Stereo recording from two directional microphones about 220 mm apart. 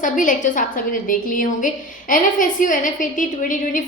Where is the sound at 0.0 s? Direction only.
35° left (ahead or behind).